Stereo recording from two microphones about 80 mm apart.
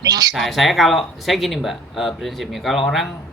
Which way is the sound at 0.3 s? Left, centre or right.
Centre.